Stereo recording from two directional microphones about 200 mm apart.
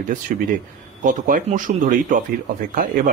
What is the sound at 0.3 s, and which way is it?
Speech, 40° right (ahead or behind).